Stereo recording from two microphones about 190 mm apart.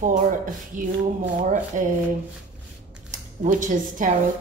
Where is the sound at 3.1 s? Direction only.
45° right (ahead or behind).